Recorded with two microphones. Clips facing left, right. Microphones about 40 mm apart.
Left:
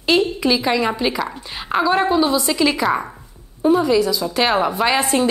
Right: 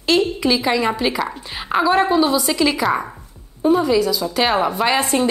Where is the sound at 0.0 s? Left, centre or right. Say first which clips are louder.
Even; centre.